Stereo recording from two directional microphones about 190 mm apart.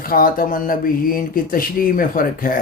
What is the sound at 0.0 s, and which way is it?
Speech, 50° left (ahead or behind).